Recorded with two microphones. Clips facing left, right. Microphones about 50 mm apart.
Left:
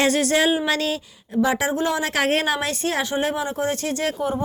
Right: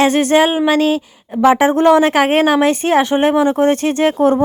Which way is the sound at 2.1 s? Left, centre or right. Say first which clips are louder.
Right 9 dB; right.